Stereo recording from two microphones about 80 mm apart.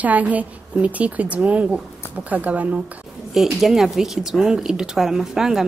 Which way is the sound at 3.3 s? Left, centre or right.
Centre.